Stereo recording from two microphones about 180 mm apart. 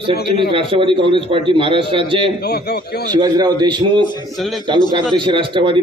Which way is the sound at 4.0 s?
25° left (ahead or behind).